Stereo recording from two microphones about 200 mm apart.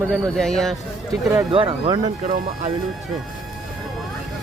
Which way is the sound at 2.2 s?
40° right (ahead or behind).